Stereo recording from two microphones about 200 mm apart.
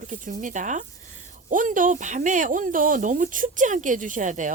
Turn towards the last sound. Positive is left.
turn(degrees=-40)  # may be behind; listen again after turning